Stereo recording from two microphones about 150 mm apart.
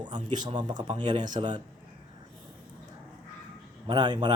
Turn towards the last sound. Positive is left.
turn(degrees=-30)  # may be behind; listen again after turning